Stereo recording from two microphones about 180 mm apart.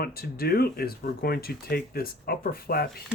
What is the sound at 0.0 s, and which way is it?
Speech, 60° left (ahead or behind).